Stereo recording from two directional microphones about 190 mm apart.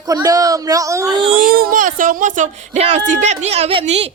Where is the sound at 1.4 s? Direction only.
50° right (ahead or behind); by 4.1 s 35° right (ahead or behind).